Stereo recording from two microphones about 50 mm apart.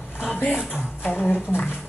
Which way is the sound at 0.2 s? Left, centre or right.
Left.